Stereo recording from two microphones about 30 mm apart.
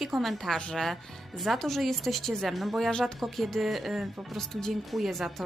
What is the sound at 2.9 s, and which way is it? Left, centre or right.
Speech, left.